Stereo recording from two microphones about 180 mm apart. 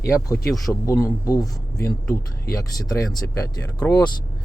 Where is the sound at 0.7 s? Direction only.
15° left (ahead or behind).